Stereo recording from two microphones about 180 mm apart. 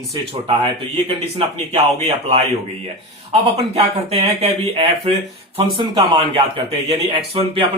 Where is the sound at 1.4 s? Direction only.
35° right (ahead or behind).